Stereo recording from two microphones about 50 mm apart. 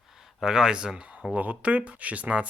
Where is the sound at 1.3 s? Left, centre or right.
Right.